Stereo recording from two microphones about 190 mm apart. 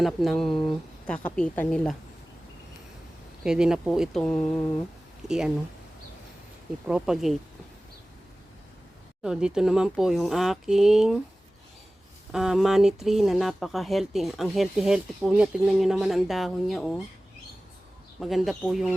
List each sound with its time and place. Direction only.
0.0 s speech: centre (ahead or behind)
3.4 s speech: 5° right (ahead or behind)
5.2 s speech: 20° right (ahead or behind)
6.8 s speech: 5° right (ahead or behind)
9.2 s speech: 5° right (ahead or behind)
12.3 s speech: centre (ahead or behind)
18.2 s speech: centre (ahead or behind)